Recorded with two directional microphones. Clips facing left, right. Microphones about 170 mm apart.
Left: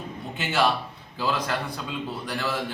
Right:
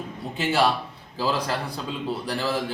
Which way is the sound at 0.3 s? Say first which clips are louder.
Right 2 dB; 35° right (ahead or behind).